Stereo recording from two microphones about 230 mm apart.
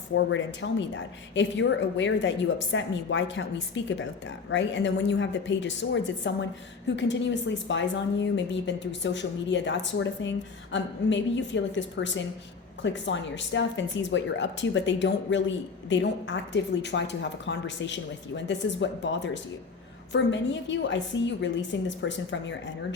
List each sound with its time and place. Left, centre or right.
0.3 s a woman's voice: left